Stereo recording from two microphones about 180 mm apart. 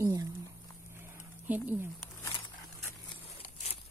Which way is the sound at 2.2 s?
25° left (ahead or behind).